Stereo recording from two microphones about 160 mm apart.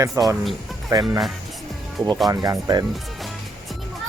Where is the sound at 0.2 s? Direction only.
20° right (ahead or behind).